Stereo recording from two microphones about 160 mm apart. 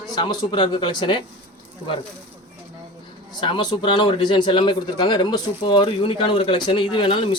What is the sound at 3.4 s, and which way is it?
Speech, 30° left (ahead or behind).